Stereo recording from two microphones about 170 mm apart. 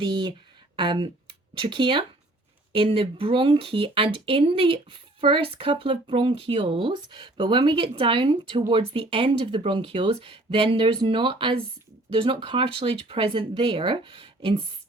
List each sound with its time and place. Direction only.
0.0 s speech: 30° right (ahead or behind)